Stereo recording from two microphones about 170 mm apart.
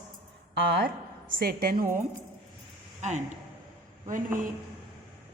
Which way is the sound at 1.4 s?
65° right (ahead or behind).